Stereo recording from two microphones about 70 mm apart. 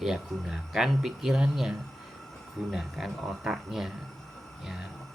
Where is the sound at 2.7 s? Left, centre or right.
Centre.